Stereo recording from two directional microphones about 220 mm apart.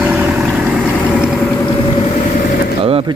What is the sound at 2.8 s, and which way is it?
Gunshot, 25° right (ahead or behind).